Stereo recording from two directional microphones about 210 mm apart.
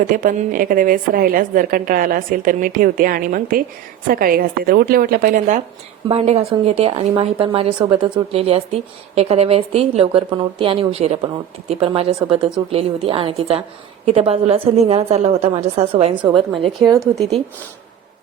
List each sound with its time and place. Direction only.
0.1 s a woman's voice: 40° right (ahead or behind)
16.6 s speech: 15° right (ahead or behind)